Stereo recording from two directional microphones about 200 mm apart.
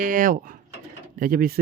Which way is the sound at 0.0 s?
40° right (ahead or behind).